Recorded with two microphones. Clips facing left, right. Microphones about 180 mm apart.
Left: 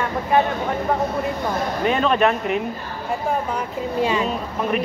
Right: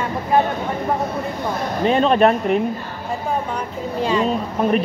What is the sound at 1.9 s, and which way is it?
Speech, 35° right (ahead or behind).